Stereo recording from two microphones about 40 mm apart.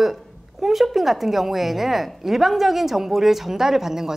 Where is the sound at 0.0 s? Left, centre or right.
Centre.